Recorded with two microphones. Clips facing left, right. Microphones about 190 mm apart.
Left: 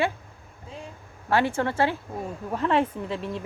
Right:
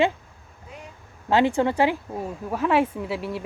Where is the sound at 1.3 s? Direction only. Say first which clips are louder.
Right 4 dB; 20° right (ahead or behind).